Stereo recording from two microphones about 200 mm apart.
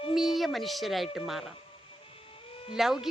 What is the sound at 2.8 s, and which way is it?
Speech, centre (ahead or behind).